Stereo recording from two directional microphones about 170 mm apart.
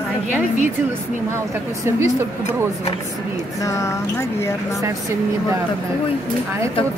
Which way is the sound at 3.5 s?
20° left (ahead or behind).